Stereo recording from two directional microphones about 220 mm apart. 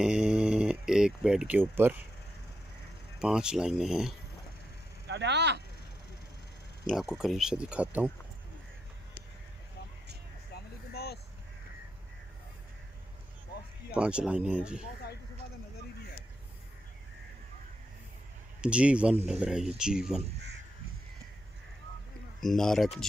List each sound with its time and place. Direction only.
0.0 s a sound: 5° right (ahead or behind)
3.2 s speech: 5° right (ahead or behind)
5.0 s speech: 50° right (ahead or behind)
6.9 s speech: centre (ahead or behind)
10.5 s vehicle: 45° left (ahead or behind)
13.9 s speech: 5° right (ahead or behind)
18.6 s speech: 5° right (ahead or behind)
22.4 s speech: centre (ahead or behind)